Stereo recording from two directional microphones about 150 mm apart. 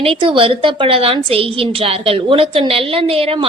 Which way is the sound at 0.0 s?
35° right (ahead or behind).